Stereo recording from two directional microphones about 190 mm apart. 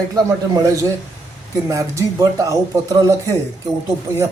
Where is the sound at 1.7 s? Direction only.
15° right (ahead or behind).